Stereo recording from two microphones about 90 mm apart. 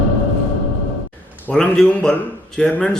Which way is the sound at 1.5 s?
10° left (ahead or behind).